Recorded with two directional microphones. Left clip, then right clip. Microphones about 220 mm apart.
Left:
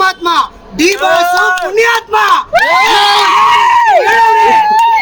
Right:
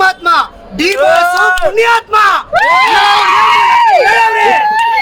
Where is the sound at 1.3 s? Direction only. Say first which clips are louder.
Even; 30° right (ahead or behind).